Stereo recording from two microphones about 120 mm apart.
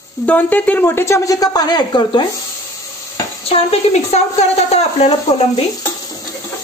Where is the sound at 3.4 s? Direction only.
65° left (ahead or behind).